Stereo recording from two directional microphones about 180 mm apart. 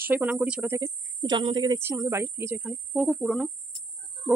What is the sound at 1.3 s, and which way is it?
Speech, 30° right (ahead or behind).